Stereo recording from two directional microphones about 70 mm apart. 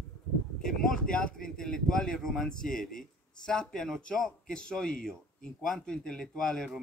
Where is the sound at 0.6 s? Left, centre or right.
Centre.